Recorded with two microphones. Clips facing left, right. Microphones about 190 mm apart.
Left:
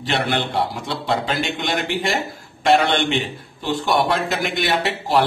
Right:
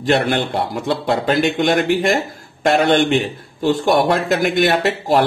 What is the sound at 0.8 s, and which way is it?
Speech, 55° right (ahead or behind).